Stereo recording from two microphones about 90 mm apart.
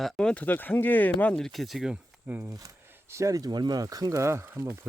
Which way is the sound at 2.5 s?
40° right (ahead or behind).